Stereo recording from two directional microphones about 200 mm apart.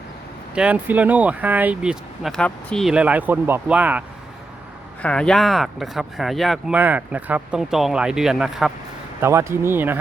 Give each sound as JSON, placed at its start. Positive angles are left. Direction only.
{"t": 0.5, "sound": "speech", "side_deg": -5}
{"t": 5.0, "sound": "speech", "side_deg": 5}
{"t": 9.2, "sound": "speech", "side_deg": -15}